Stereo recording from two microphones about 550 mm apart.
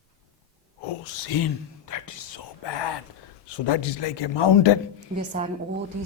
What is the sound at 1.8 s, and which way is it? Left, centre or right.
Whispering, left.